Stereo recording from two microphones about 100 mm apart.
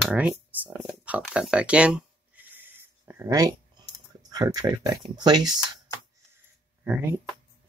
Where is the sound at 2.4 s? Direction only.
20° right (ahead or behind).